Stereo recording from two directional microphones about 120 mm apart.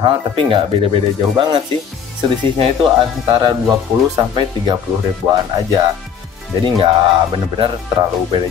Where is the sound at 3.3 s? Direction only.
40° right (ahead or behind).